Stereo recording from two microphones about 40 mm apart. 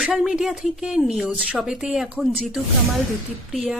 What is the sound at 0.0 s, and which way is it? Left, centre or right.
A woman's voice, centre.